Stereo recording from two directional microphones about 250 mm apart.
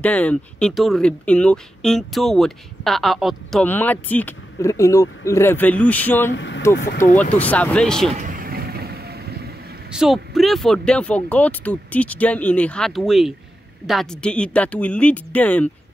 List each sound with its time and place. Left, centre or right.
0.0 s speech: centre
6.3 s speech: left
7.3 s speech: centre
8.2 s vehicle: right
9.9 s speech: centre